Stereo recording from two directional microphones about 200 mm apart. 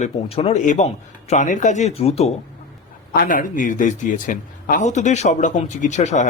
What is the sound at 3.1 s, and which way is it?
Speech, 45° left (ahead or behind).